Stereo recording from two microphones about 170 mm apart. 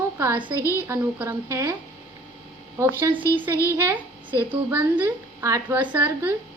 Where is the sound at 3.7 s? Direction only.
15° right (ahead or behind).